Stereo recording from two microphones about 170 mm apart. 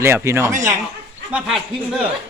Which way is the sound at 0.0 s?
15° right (ahead or behind).